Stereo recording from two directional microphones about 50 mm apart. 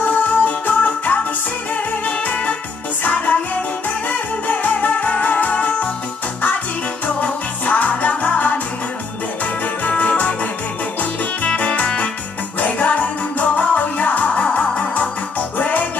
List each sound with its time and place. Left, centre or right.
0.1 s music: left
4.5 s music: left
7.2 s music: left
9.8 s organ: left
11.0 s music: left